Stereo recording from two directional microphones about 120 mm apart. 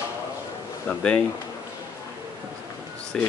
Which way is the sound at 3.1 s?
5° left (ahead or behind).